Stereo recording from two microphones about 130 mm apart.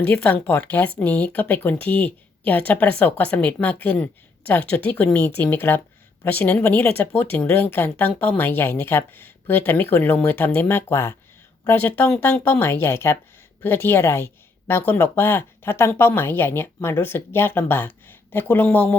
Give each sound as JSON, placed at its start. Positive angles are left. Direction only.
{"t": 0.0, "sound": "speech", "side_deg": 15}